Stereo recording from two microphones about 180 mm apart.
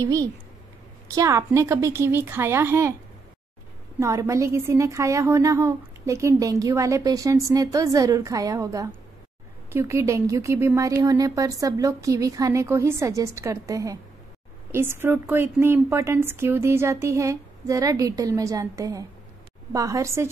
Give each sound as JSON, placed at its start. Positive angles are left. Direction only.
{"t": 0.0, "sound": "a woman's voice", "side_deg": -20}
{"t": 4.0, "sound": "a woman's voice", "side_deg": -15}